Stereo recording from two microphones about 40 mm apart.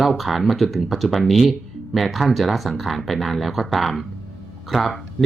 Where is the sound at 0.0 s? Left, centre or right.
Centre.